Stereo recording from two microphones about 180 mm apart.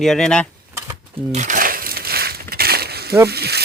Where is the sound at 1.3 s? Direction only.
45° right (ahead or behind).